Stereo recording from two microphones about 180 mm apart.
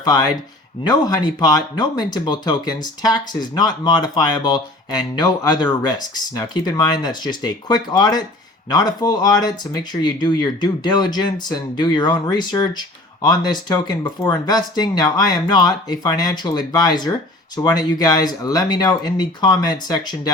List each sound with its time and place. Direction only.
0.0 s speech: 20° left (ahead or behind)